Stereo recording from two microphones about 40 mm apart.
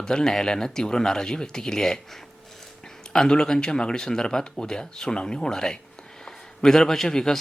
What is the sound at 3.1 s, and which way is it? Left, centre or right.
A man's voice, centre.